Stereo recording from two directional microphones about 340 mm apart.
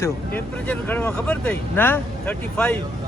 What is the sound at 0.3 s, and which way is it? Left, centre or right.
A man's voice, centre.